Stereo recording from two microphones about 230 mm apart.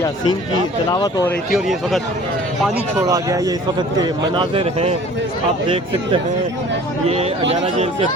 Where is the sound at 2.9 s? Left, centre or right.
Centre.